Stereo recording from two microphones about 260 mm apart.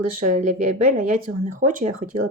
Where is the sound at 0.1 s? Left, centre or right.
Right.